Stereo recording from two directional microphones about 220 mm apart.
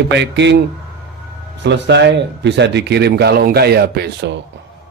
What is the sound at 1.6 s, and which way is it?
A man's voice, 50° right (ahead or behind).